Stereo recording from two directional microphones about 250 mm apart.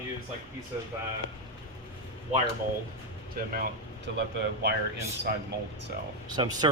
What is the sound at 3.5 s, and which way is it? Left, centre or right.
Speech, right.